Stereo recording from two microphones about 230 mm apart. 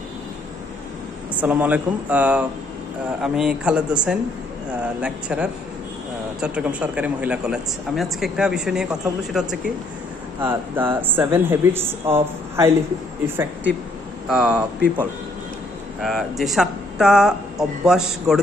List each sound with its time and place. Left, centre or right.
1.4 s speech: centre
14.3 s speech: centre
16.0 s speech: centre